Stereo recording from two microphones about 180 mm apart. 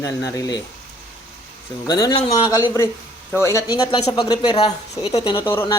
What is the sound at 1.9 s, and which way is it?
Speech, 20° left (ahead or behind).